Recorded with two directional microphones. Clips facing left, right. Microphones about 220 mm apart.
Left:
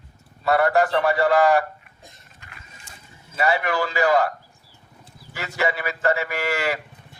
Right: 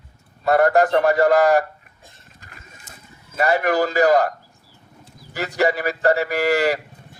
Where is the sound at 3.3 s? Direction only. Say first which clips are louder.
Right 4 dB; 40° right (ahead or behind).